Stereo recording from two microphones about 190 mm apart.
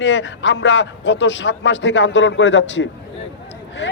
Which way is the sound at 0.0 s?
70° left (ahead or behind).